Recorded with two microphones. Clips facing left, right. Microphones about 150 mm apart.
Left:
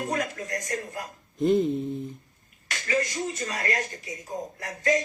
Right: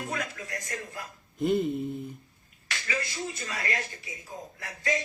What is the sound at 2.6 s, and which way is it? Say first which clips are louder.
Speech: left 7 dB; 45° left (ahead or behind).